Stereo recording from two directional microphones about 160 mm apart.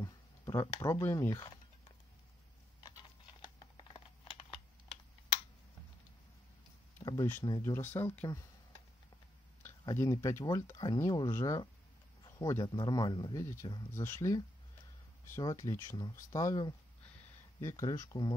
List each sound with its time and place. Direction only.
0.0 s a sound: 20° left (ahead or behind)
1.0 s speech: 15° left (ahead or behind)
2.8 s computer keyboard: 30° left (ahead or behind)
7.0 s speech: 20° left (ahead or behind)
9.9 s speech: 20° left (ahead or behind)